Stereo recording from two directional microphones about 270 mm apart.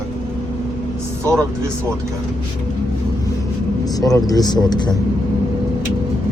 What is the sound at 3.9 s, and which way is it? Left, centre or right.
Speech, centre.